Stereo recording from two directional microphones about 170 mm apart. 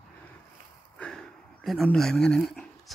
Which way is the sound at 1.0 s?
5° left (ahead or behind).